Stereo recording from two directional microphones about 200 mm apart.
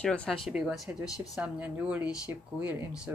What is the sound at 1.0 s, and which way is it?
Speech, 15° left (ahead or behind).